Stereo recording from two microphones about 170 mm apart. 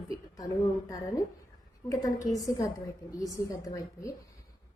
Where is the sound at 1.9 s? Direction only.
20° left (ahead or behind).